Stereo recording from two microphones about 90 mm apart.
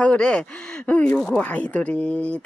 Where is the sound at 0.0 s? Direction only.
10° left (ahead or behind).